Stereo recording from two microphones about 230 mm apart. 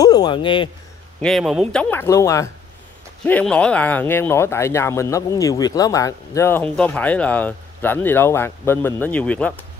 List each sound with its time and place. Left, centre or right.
0.0 s speech: centre
1.2 s speech: centre